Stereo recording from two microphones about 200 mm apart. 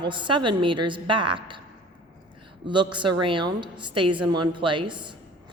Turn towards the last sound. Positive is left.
turn(degrees=-25)  # may be behind; listen again after turning